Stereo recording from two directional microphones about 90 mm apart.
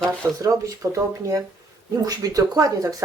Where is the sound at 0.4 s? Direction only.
40° right (ahead or behind).